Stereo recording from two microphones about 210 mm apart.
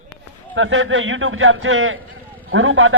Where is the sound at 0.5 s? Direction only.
65° right (ahead or behind).